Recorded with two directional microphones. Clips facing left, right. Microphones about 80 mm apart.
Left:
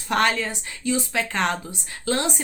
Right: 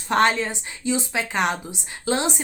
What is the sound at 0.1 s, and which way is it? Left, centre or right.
Speech, right.